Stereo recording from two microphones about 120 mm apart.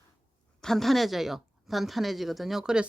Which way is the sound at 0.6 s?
Centre (ahead or behind).